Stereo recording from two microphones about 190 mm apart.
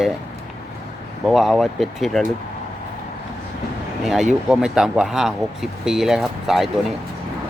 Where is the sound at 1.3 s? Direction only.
Centre (ahead or behind).